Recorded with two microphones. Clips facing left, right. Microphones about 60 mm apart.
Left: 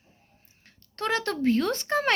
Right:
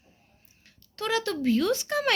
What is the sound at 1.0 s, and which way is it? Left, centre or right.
Speech, left.